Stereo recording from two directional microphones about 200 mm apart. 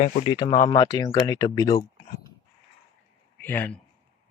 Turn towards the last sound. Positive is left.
turn(degrees=10)  # may be behind; listen again after turning